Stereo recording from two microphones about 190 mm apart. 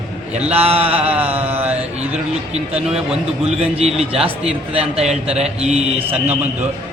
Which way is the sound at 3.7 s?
30° right (ahead or behind).